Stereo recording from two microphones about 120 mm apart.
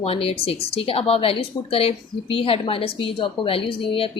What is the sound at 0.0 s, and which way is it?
Speech, 55° left (ahead or behind).